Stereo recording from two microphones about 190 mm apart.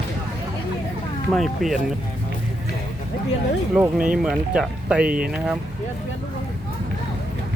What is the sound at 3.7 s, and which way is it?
Speech, 5° right (ahead or behind).